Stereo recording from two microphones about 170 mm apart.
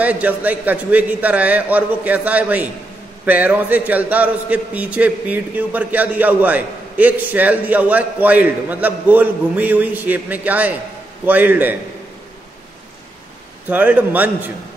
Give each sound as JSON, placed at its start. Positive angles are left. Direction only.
{"t": 0.0, "sound": "a man's voice", "side_deg": -10}
{"t": 13.7, "sound": "a man's voice", "side_deg": -10}